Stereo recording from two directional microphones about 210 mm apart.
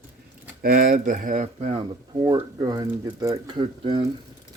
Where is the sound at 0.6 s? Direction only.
45° right (ahead or behind).